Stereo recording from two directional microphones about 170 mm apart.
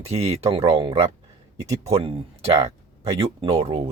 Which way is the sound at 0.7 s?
25° right (ahead or behind).